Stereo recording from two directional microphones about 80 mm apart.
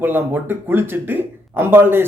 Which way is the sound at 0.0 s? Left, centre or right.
Right.